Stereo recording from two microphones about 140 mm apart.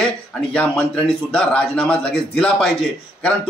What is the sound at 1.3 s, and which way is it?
Speech, 10° left (ahead or behind).